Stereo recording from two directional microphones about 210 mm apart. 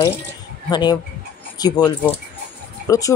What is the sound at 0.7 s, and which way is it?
Speech, 20° left (ahead or behind).